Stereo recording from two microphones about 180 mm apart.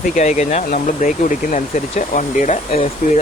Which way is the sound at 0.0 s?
45° left (ahead or behind).